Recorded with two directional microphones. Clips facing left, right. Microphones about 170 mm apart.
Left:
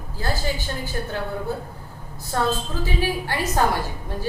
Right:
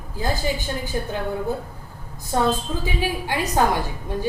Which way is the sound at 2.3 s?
15° right (ahead or behind).